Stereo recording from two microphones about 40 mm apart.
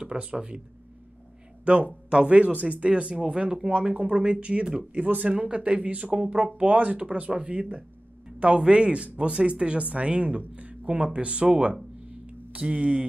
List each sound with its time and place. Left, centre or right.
0.0 s speech: right
1.6 s speech: right
2.3 s speech: right
3.7 s speech: right
12.3 s a sound: right